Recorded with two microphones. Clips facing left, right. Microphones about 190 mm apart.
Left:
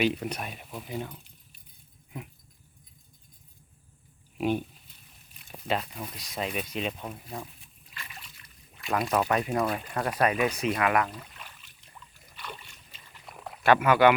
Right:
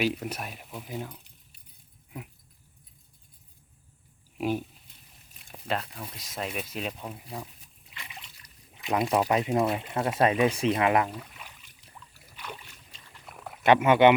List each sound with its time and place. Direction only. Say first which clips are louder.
0.0 s speech: left 1 dB; 5° right (ahead or behind)
4.4 s speech: left 1 dB; 5° right (ahead or behind)
7.9 s a sound: even; 15° right (ahead or behind)
8.7 s speech: right 2 dB; 20° right (ahead or behind)
11.2 s rowboat: right 1 dB; 5° right (ahead or behind)
12.4 s boat: right 1 dB; 10° right (ahead or behind)
12.9 s boat: left 1 dB; 5° left (ahead or behind)
13.6 s speech: right 2 dB; 20° right (ahead or behind)